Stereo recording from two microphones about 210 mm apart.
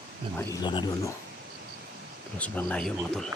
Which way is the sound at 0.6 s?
20° left (ahead or behind).